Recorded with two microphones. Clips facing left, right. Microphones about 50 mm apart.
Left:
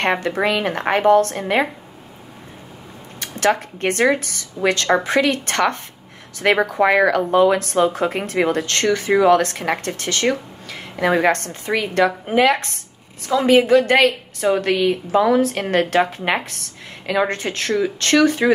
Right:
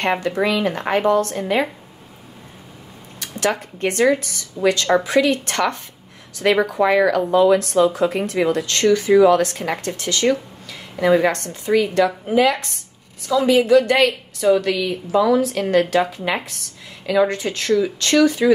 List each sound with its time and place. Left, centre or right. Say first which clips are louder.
0.0 s speech: even; left
3.2 s speech: left 3 dB; left
11.1 s a woman's voice: right 1 dB; left
11.3 s a woman's voice: right 4 dB; left